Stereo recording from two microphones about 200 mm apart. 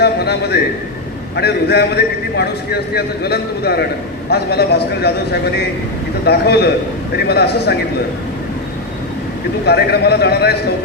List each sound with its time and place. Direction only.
0.0 s a man's voice: 55° left (ahead or behind)
9.6 s a man's voice: 55° left (ahead or behind)